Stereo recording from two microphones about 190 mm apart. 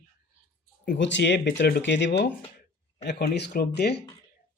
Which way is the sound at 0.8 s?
70° left (ahead or behind).